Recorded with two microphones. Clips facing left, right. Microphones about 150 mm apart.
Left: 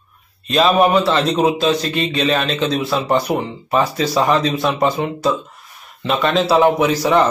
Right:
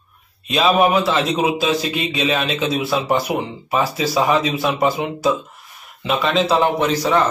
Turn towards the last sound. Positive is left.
turn(degrees=10)  # may be behind; listen again after turning